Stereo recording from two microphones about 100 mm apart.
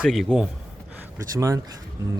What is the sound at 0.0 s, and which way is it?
Speech, centre (ahead or behind).